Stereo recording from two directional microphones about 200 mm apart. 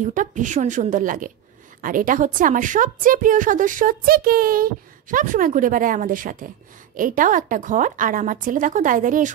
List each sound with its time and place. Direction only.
0.0 s a woman's voice: 40° right (ahead or behind)